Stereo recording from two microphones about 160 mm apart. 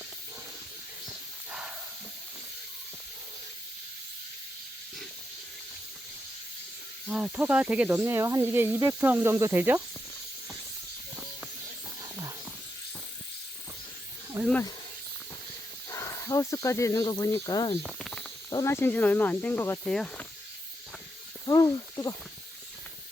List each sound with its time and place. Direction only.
1.0 s hiss: 5° right (ahead or behind)
7.1 s speech: 5° right (ahead or behind)
14.4 s speech: 20° right (ahead or behind)
15.9 s speech: 20° left (ahead or behind)
17.8 s snake: centre (ahead or behind)
18.5 s speech: 15° left (ahead or behind)
21.4 s speech: 25° left (ahead or behind)